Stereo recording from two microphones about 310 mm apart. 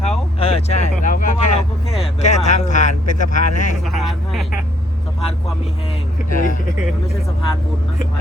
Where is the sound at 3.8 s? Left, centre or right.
Centre.